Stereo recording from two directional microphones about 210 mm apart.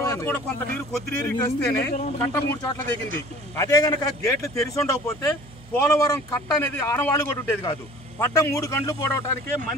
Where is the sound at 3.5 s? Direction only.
15° left (ahead or behind).